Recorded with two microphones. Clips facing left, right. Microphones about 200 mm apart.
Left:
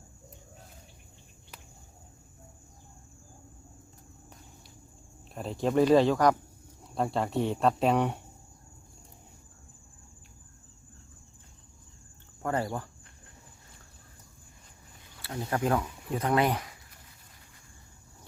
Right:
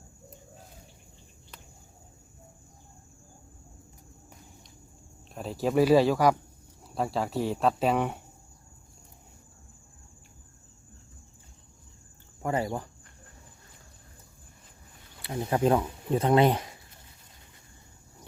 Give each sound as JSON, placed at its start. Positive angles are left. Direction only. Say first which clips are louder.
{"t": 5.3, "sound": "speech", "louder": "right 1 dB", "side_deg": 0}
{"t": 12.4, "sound": "speech", "louder": "right 1 dB", "side_deg": -10}
{"t": 15.2, "sound": "speech", "louder": "right 4 dB", "side_deg": -20}